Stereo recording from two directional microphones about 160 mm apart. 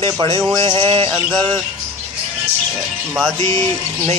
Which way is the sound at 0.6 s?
35° right (ahead or behind).